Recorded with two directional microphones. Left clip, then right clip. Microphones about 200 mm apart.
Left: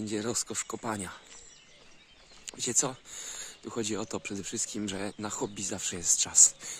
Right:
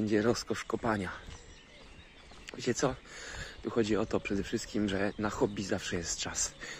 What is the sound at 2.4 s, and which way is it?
Speech, 20° left (ahead or behind).